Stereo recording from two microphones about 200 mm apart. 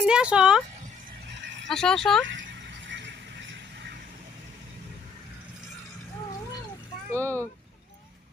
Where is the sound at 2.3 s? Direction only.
70° right (ahead or behind).